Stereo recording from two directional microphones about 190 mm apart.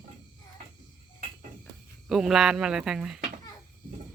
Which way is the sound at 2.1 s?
Centre (ahead or behind).